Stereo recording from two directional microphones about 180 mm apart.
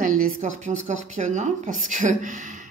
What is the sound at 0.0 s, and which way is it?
A woman's voice, 45° right (ahead or behind).